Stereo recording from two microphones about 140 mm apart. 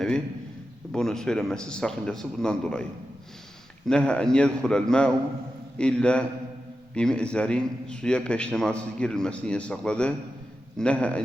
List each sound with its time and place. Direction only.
0.9 s a man's voice: 5° left (ahead or behind)
3.8 s a man's voice: 5° left (ahead or behind)